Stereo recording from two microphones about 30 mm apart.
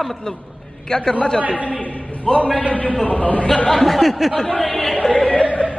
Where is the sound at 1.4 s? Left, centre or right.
Right.